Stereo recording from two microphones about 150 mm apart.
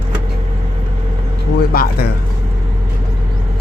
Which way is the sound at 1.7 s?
90° left.